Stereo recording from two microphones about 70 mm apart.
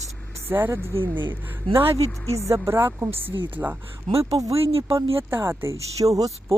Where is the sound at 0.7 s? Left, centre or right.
Right.